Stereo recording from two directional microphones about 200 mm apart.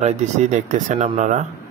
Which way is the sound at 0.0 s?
35° right (ahead or behind).